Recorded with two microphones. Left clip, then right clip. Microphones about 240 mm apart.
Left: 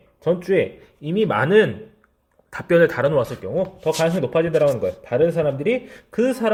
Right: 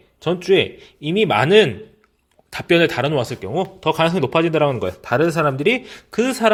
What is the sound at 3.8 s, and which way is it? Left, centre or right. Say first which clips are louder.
Speech: right 4 dB; right.